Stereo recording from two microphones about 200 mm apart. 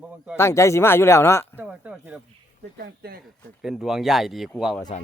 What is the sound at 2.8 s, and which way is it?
Speech, 50° right (ahead or behind).